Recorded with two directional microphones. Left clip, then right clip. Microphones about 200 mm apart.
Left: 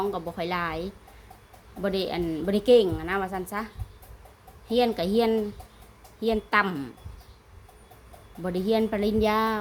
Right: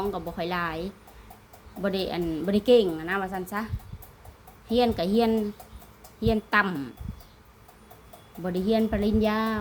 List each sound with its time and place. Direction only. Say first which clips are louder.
0.0 s a woman's voice: left 1 dB; 10° left (ahead or behind)
4.7 s a woman's voice: even; 10° left (ahead or behind)
8.4 s a woman's voice: even; 15° left (ahead or behind)